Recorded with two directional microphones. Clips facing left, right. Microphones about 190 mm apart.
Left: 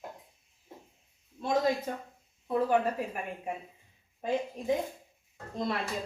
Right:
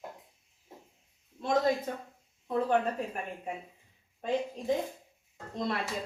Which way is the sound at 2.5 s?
5° left (ahead or behind).